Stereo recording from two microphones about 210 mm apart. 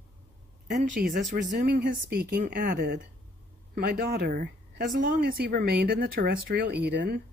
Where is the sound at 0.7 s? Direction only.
40° right (ahead or behind).